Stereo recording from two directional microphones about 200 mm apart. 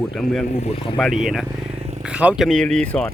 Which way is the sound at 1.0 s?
Centre (ahead or behind).